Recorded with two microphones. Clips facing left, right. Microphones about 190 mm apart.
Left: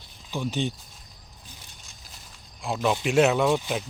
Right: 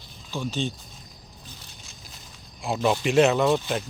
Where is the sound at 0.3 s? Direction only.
15° left (ahead or behind).